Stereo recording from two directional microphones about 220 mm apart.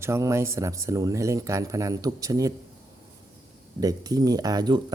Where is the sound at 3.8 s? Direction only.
15° right (ahead or behind).